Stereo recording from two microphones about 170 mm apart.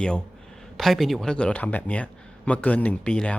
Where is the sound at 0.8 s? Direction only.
Centre (ahead or behind).